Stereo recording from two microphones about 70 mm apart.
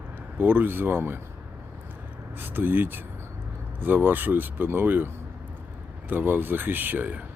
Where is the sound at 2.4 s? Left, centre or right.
Right.